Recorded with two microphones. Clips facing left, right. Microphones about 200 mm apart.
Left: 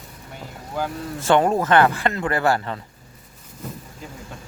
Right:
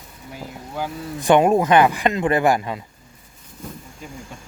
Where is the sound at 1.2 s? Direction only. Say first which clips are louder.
Right 3 dB; 15° right (ahead or behind).